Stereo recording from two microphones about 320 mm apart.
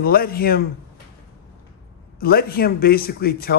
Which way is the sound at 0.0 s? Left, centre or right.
Left.